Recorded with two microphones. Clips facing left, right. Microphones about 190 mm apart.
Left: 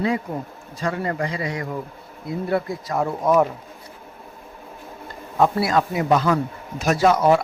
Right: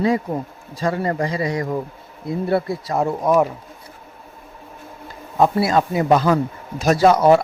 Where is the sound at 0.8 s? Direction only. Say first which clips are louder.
Right 3 dB; 35° right (ahead or behind).